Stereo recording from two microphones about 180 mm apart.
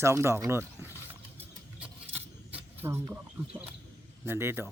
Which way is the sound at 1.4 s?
10° right (ahead or behind).